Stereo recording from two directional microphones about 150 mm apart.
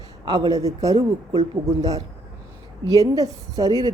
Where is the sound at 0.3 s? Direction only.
25° right (ahead or behind).